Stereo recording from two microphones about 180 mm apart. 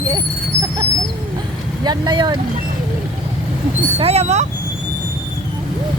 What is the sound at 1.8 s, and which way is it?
Speech, 25° right (ahead or behind).